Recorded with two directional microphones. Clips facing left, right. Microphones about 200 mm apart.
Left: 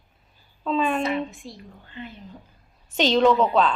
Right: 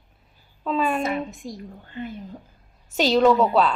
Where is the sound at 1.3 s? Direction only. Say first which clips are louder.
Right 5 dB; 45° right (ahead or behind).